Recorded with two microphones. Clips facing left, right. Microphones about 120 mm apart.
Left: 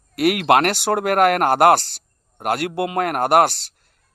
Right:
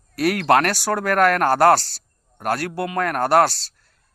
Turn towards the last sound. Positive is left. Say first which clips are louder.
# left 1 dB
turn(degrees=20)  # may be behind; listen again after turning